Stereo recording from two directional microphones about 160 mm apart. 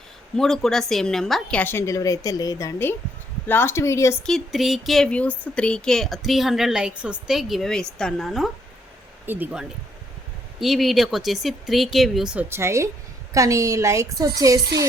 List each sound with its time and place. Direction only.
0.3 s a woman's voice: centre (ahead or behind); by 4.2 s 20° left (ahead or behind)
4.3 s a woman's voice: centre (ahead or behind)
9.2 s a woman's voice: 10° right (ahead or behind)